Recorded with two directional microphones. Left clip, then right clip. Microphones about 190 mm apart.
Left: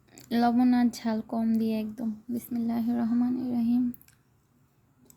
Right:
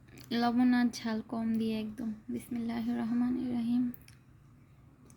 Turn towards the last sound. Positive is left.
turn(degrees=10)  # may be behind; listen again after turning